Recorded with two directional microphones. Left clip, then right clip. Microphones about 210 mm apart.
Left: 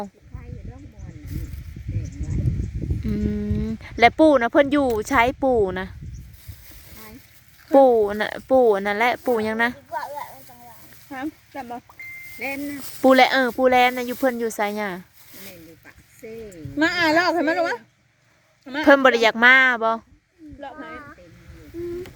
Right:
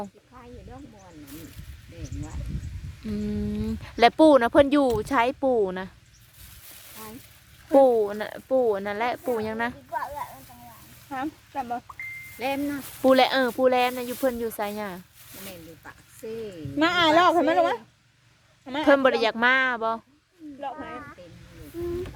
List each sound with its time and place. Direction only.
3.0 s speech: 15° left (ahead or behind)
7.7 s speech: 20° left (ahead or behind)
9.9 s a sound: 50° left (ahead or behind)
11.1 s speech: 30° left (ahead or behind)
13.0 s speech: 20° left (ahead or behind)
16.7 s speech: 30° left (ahead or behind)
20.6 s a sound: 35° left (ahead or behind)